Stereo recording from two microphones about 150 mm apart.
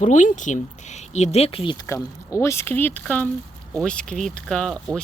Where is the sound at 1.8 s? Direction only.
20° left (ahead or behind).